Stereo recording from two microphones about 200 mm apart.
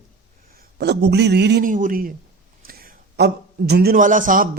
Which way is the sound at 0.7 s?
55° right (ahead or behind).